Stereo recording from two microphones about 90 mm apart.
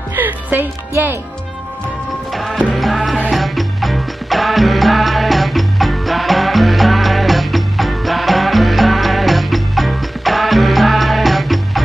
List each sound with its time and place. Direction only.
0.1 s speech: 20° right (ahead or behind)
2.3 s music: centre (ahead or behind)